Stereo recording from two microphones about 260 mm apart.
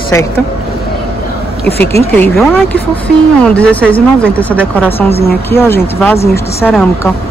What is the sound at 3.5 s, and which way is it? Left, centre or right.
Speech, centre.